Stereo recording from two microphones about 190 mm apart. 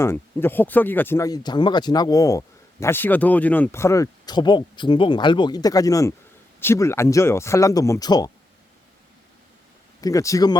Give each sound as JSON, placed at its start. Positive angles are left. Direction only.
{"t": 0.0, "sound": "speech", "side_deg": 10}
{"t": 10.0, "sound": "speech", "side_deg": 15}